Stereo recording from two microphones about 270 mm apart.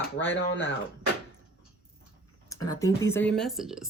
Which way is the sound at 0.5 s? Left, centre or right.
Left.